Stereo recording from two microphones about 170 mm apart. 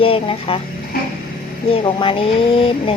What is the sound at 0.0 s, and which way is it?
Speech, 35° left (ahead or behind).